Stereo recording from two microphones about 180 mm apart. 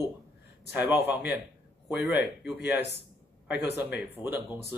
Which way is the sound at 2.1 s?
70° left (ahead or behind).